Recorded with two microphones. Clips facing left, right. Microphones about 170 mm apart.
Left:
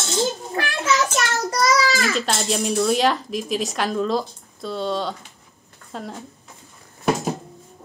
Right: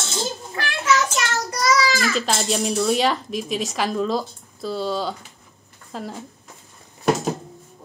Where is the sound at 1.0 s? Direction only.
35° left (ahead or behind).